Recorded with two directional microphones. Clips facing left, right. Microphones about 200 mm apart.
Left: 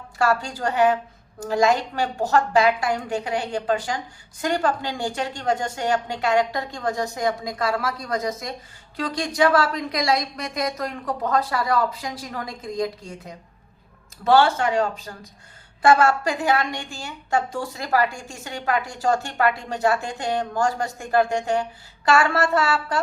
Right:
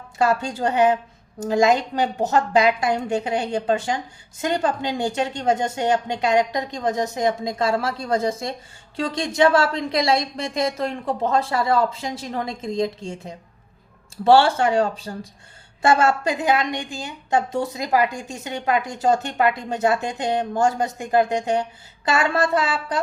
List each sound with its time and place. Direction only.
0.2 s a woman's voice: 20° right (ahead or behind)